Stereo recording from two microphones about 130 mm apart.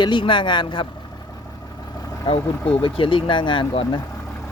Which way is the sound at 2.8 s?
40° left (ahead or behind).